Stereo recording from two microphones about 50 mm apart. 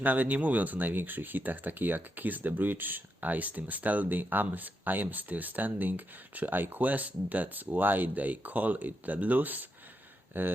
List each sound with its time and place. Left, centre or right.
0.0 s speech: right